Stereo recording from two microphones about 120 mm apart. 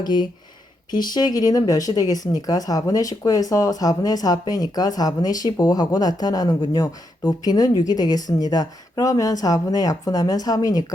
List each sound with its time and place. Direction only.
0.0 s speech: 35° left (ahead or behind)